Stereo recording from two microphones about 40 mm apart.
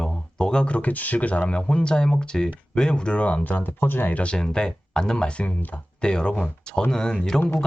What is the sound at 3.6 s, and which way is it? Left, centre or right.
Speech, left.